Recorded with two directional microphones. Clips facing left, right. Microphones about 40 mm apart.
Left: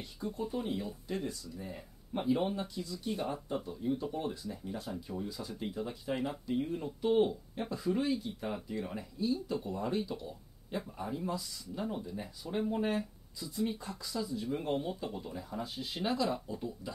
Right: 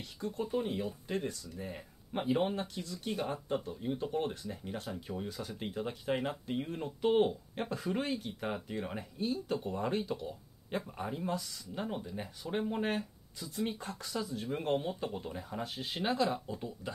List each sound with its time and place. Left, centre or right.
0.2 s speech: right